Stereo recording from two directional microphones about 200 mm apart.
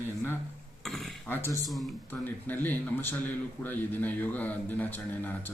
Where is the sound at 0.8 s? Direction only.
Centre (ahead or behind).